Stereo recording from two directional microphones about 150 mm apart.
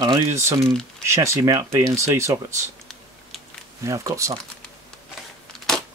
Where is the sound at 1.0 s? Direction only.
20° right (ahead or behind).